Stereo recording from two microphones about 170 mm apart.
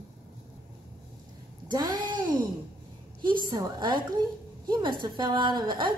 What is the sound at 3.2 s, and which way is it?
A woman's voice, 25° right (ahead or behind).